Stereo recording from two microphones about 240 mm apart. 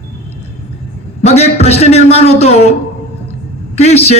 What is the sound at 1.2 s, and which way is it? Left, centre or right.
A man's voice, left.